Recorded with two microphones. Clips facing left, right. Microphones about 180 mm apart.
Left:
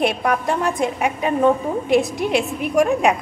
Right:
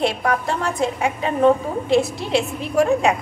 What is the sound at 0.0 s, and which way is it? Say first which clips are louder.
A woman's voice: left 1 dB; 20° left (ahead or behind).